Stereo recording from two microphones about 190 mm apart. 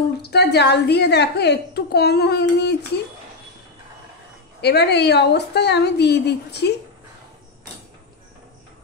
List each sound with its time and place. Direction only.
0.2 s a woman's voice: 60° left (ahead or behind)
4.6 s a woman's voice: 60° left (ahead or behind)